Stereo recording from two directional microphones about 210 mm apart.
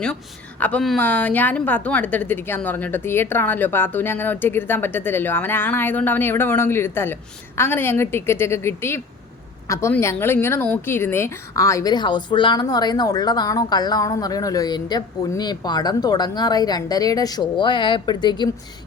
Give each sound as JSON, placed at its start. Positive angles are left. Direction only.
{"t": 0.6, "sound": "a woman's voice", "side_deg": 5}